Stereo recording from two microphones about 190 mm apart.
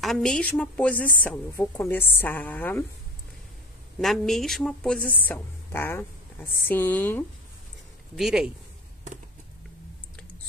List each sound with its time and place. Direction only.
0.0 s speech: centre (ahead or behind)
4.0 s speech: centre (ahead or behind)
8.2 s speech: centre (ahead or behind)